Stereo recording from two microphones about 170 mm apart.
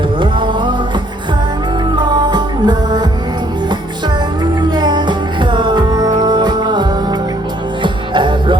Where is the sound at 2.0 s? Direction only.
25° right (ahead or behind).